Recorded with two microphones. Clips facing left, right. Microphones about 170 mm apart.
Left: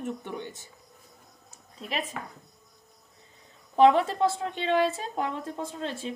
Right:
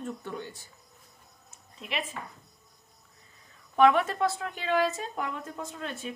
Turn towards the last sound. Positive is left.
turn(degrees=30)  # may be behind; listen again after turning